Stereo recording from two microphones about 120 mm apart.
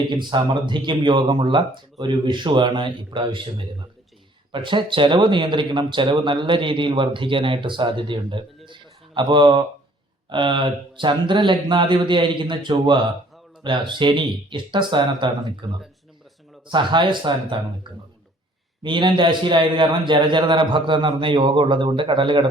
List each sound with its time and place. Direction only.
0.1 s speech: 40° right (ahead or behind)
4.5 s speech: 45° right (ahead or behind)
16.6 s speech: 40° right (ahead or behind)
18.8 s speech: 40° right (ahead or behind)